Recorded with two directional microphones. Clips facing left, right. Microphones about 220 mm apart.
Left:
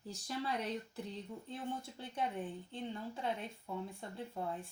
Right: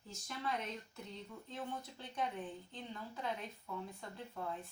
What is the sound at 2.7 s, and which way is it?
Speech, 30° left (ahead or behind).